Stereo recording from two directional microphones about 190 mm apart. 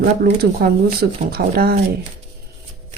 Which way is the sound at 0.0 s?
50° right (ahead or behind).